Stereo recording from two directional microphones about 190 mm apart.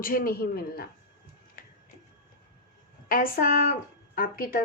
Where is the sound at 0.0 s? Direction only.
50° left (ahead or behind).